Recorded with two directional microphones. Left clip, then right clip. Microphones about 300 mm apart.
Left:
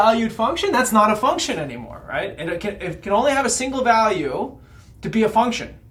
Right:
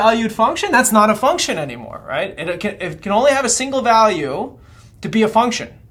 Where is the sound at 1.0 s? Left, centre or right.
Right.